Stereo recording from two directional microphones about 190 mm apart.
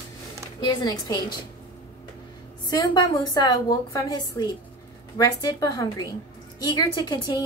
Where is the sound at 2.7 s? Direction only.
25° left (ahead or behind).